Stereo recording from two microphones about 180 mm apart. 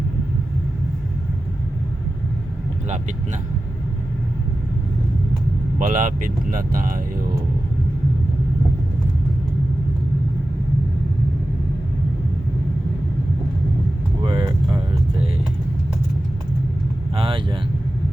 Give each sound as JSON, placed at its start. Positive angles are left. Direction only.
{"t": 5.8, "sound": "speech", "side_deg": -50}
{"t": 14.3, "sound": "vehicle", "side_deg": -25}
{"t": 17.2, "sound": "vehicle", "side_deg": -30}